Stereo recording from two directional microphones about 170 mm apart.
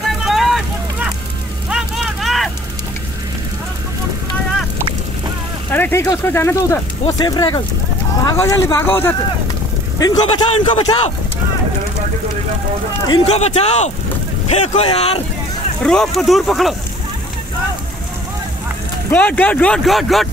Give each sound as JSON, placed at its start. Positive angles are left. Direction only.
{"t": 0.0, "sound": "vehicle", "side_deg": 0}
{"t": 1.7, "sound": "a sound", "side_deg": -5}
{"t": 5.7, "sound": "speech", "side_deg": 10}
{"t": 13.2, "sound": "speech", "side_deg": 40}
{"t": 15.8, "sound": "speech", "side_deg": 5}
{"t": 19.0, "sound": "speech", "side_deg": 10}